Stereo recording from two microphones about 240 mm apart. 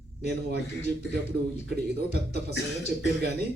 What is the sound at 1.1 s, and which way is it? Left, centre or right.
Speech, right.